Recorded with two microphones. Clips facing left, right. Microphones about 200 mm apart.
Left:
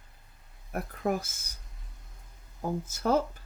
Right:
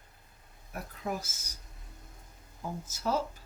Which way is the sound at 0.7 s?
55° left (ahead or behind).